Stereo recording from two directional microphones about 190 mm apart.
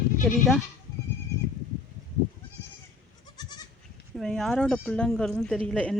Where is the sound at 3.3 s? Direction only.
20° left (ahead or behind).